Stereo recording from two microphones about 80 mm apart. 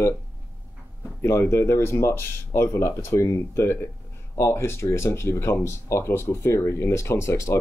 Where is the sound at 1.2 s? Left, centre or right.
Left.